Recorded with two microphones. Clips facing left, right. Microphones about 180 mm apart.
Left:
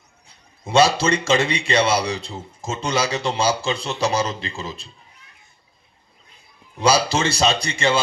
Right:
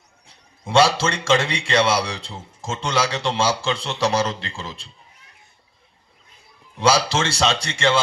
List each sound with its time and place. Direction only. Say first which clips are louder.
0.8 s a man's voice: left 1 dB; 90° right
6.8 s a man's voice: left 1 dB; 90° right